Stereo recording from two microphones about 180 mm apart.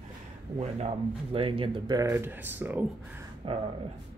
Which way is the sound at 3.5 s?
35° right (ahead or behind).